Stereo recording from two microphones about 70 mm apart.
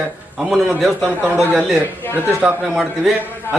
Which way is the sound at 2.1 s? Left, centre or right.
Left.